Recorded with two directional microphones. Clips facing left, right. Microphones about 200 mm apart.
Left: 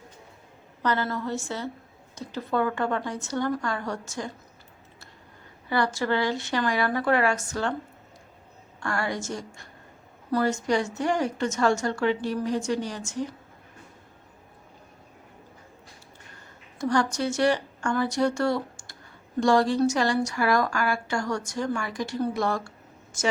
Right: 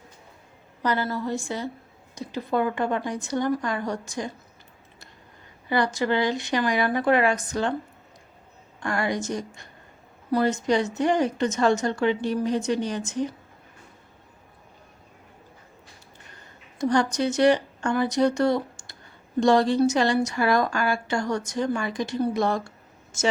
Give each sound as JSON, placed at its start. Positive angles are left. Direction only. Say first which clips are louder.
{"t": 0.8, "sound": "a woman's voice", "louder": "right 1 dB", "side_deg": -15}
{"t": 5.6, "sound": "a woman's voice", "louder": "right 2 dB", "side_deg": -20}
{"t": 8.8, "sound": "a woman's voice", "louder": "right 3 dB", "side_deg": -20}
{"t": 16.7, "sound": "a woman's voice", "louder": "right 2 dB", "side_deg": -20}